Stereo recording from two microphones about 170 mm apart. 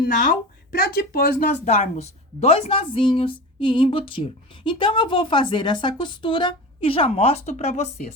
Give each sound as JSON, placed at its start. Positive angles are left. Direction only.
{"t": 0.0, "sound": "speech", "side_deg": 55}